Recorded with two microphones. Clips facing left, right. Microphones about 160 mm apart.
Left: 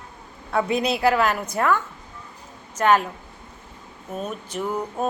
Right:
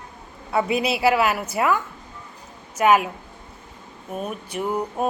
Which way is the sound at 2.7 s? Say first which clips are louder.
Right 1 dB; 10° right (ahead or behind).